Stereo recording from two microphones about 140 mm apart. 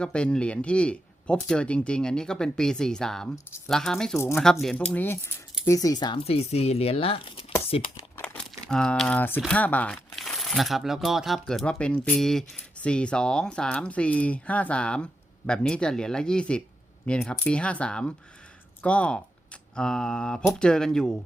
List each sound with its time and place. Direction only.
0.0 s speech: 5° left (ahead or behind); by 6.1 s 30° left (ahead or behind)
6.2 s speech: 45° left (ahead or behind)
8.2 s crumpling: 5° left (ahead or behind)
9.5 s speech: 10° left (ahead or behind)